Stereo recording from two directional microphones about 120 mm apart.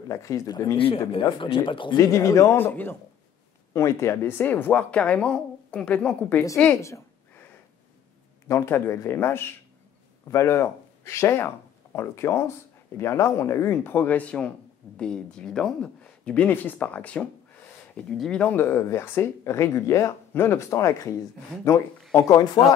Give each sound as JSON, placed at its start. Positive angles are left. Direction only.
{"t": 0.1, "sound": "speech", "side_deg": 25}
{"t": 0.7, "sound": "speech", "side_deg": 50}
{"t": 2.0, "sound": "speech", "side_deg": 25}
{"t": 8.5, "sound": "speech", "side_deg": 20}